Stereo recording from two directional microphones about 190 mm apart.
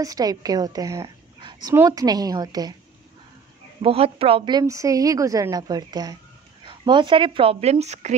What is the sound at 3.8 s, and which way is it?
Speech, 30° right (ahead or behind).